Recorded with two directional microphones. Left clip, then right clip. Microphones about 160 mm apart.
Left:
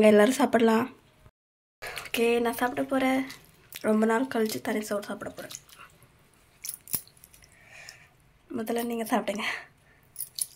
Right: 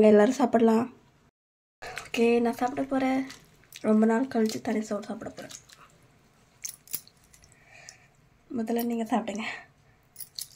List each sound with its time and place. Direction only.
0.0 s speech: 5° right (ahead or behind)
2.0 s speech: centre (ahead or behind)
6.6 s a sound: 30° right (ahead or behind)
8.5 s speech: centre (ahead or behind)